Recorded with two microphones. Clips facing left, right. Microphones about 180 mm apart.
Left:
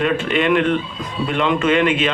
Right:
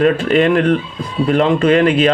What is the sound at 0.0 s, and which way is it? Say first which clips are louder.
Speech: right 6 dB; 40° right (ahead or behind).